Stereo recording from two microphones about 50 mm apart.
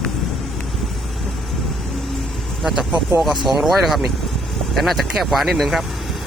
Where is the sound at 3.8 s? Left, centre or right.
Centre.